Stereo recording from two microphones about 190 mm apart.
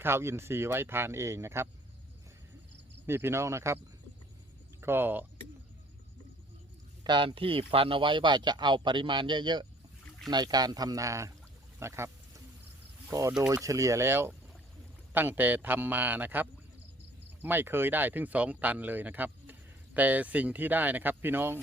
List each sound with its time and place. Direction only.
0.0 s speech: 15° right (ahead or behind)
3.1 s speech: 10° right (ahead or behind)
4.8 s speech: 10° right (ahead or behind)
7.0 s speech: 25° right (ahead or behind)